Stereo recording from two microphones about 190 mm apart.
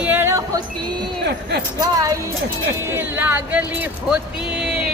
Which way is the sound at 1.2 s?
60° right (ahead or behind).